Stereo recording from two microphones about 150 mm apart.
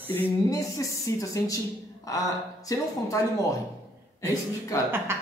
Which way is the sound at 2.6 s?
20° left (ahead or behind).